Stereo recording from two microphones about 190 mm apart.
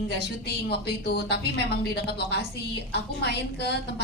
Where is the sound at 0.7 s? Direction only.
55° left (ahead or behind).